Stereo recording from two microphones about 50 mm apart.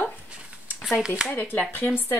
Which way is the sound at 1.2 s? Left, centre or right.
Centre.